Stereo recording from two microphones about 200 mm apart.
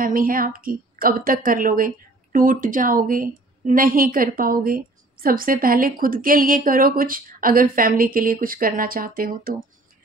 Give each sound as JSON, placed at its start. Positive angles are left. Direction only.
{"t": 0.0, "sound": "a woman's voice", "side_deg": -45}